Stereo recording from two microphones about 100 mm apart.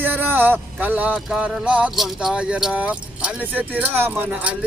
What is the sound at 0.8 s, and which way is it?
Speech, 15° right (ahead or behind).